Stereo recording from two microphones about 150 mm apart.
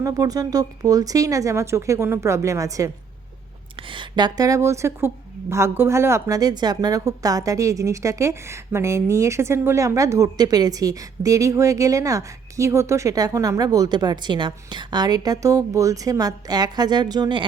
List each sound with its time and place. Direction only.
0.0 s a woman's voice: 25° right (ahead or behind)
3.9 s a woman's voice: 30° right (ahead or behind)